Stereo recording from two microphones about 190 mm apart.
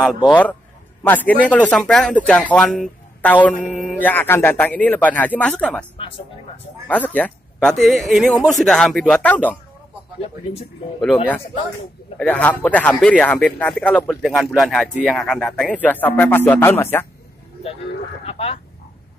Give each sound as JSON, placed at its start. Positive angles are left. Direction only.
{"t": 0.3, "sound": "speech", "side_deg": 10}
{"t": 5.9, "sound": "speech", "side_deg": 30}
{"t": 7.2, "sound": "speech", "side_deg": 5}
{"t": 12.2, "sound": "speech", "side_deg": 10}
{"t": 18.2, "sound": "speech", "side_deg": 30}